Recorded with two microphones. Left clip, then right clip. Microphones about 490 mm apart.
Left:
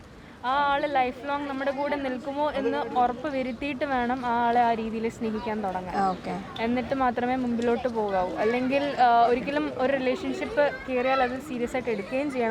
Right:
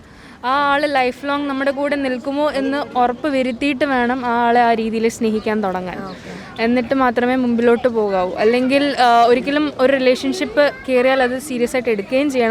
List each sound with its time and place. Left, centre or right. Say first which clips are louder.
0.4 s speech: right 8 dB; right